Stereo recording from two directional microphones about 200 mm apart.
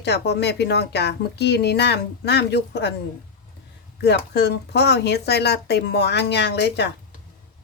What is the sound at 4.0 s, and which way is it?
Speech, 55° left (ahead or behind).